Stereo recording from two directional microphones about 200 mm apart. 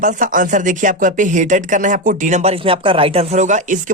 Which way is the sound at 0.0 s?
40° right (ahead or behind).